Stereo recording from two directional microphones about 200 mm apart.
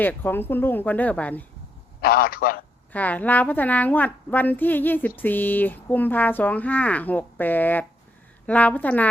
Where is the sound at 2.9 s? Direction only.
10° left (ahead or behind).